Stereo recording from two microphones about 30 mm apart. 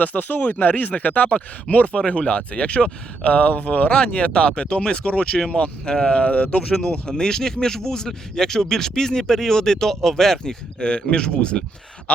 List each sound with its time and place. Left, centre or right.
0.0 s speech: left
0.4 s speech: left
2.0 s speech: left
3.5 s speech: left
4.0 s speech: left
5.8 s speech: left
6.1 s speech: left
6.7 s speech: left
10.4 s speech: left